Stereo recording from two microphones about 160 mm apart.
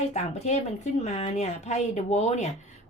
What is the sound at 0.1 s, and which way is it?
Speech, 45° left (ahead or behind).